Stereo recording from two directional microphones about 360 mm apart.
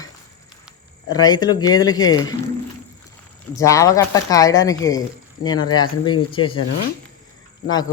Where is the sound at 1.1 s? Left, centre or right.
Centre.